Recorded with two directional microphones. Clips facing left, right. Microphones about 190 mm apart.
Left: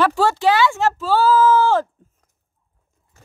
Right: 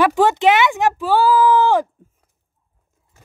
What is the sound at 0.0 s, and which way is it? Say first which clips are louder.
Speech: right 3 dB; 20° right (ahead or behind).